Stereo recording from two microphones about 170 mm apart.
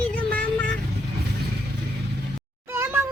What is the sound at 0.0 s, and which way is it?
Vehicle, 10° left (ahead or behind).